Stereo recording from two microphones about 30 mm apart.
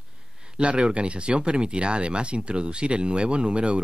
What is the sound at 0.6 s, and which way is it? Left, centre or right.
Speech, right.